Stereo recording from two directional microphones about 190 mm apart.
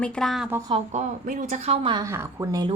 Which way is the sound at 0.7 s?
35° right (ahead or behind).